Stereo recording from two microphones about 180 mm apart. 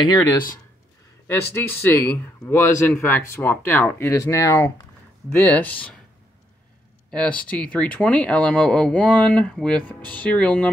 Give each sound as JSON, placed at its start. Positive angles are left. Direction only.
{"t": 0.1, "sound": "speech", "side_deg": 20}
{"t": 7.1, "sound": "speech", "side_deg": 5}